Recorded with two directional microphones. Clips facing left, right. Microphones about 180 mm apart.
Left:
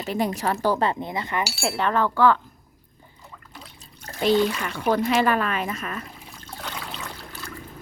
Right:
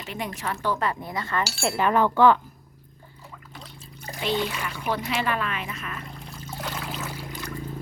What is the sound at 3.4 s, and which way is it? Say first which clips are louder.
Trickle: even; centre (ahead or behind).